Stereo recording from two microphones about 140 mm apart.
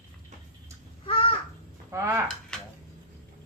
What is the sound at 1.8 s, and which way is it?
Speech, 20° right (ahead or behind).